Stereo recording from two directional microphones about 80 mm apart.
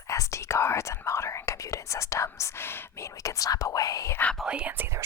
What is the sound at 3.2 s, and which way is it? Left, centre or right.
Speech, left.